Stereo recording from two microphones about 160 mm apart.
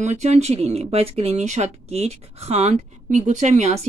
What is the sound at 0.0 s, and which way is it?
Speech, 45° right (ahead or behind).